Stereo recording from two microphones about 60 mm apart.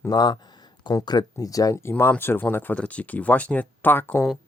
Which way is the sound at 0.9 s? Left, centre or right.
Left.